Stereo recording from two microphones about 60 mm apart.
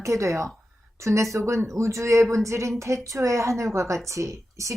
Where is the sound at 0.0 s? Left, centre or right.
Right.